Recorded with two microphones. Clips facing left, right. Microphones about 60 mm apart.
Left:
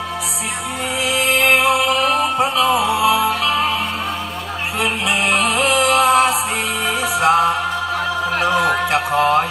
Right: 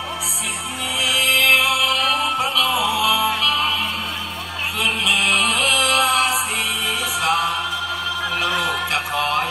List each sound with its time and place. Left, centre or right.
1.1 s music: left
5.5 s music: left
8.3 s a sound: left